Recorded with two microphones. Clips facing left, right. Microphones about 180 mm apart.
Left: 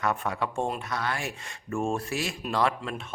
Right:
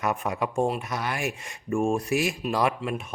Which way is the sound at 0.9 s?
20° right (ahead or behind).